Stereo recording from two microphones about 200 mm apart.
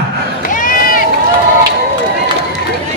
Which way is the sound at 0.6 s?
45° left (ahead or behind).